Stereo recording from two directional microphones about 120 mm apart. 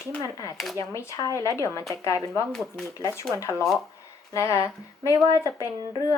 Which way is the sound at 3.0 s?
25° left (ahead or behind).